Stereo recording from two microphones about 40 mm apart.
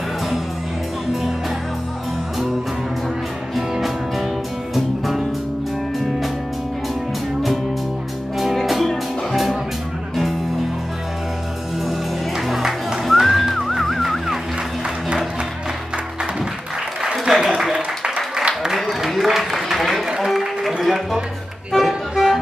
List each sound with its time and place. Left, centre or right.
4.7 s music: centre
8.8 s music: centre
11.8 s music: centre
17.0 s applause: centre
17.7 s applause: centre
19.2 s applause: centre
20.2 s a sound: centre
20.8 s music: centre